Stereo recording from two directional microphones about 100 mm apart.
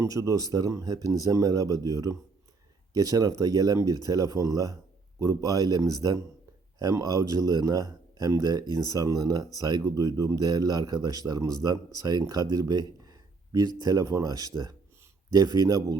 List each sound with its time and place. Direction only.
0.0 s speech: 35° right (ahead or behind)